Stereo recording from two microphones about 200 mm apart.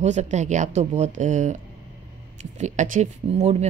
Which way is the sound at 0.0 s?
35° right (ahead or behind).